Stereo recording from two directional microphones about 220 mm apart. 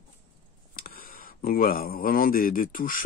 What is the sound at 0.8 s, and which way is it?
Speech, 40° left (ahead or behind).